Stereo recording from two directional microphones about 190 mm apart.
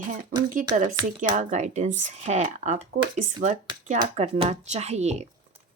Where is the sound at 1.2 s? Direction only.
45° right (ahead or behind).